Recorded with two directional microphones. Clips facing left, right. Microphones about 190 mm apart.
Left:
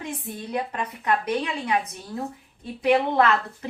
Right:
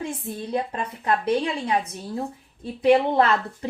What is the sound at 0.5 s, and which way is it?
Speech, 30° right (ahead or behind).